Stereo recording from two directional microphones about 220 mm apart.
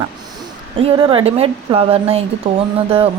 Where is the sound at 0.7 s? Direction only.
25° right (ahead or behind).